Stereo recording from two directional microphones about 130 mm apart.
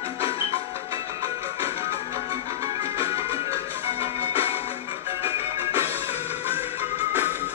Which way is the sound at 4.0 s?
50° left (ahead or behind).